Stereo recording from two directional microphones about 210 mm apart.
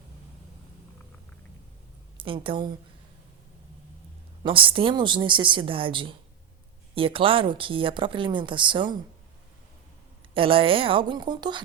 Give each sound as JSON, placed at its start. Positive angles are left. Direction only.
{"t": 2.1, "sound": "a woman's voice", "side_deg": -25}
{"t": 4.4, "sound": "speech", "side_deg": -25}
{"t": 10.3, "sound": "speech", "side_deg": -25}